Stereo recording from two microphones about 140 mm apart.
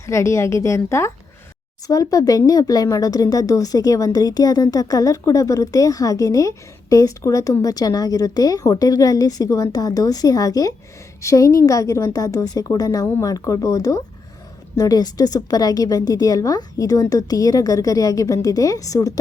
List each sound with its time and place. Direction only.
0.0 s speech: 20° left (ahead or behind)